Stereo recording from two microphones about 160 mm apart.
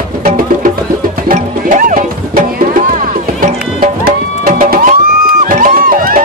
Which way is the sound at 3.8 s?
60° right (ahead or behind).